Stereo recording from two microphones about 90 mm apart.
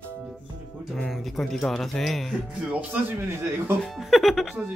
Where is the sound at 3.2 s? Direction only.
30° right (ahead or behind).